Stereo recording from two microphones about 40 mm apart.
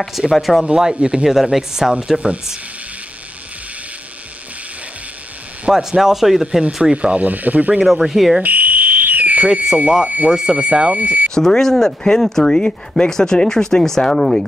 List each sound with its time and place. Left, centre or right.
0.3 s speech: centre
0.9 s speech: right
1.2 s speech: centre
2.1 s speech: right
5.7 s speech: centre
6.6 s speech: right
8.1 s speech: centre
8.4 s fire alarm: right
10.0 s speech: right
11.3 s speech: centre